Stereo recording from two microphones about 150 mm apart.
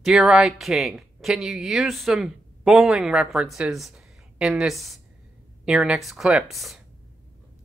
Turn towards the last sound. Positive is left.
turn(degrees=0)  # may be behind; listen again after turning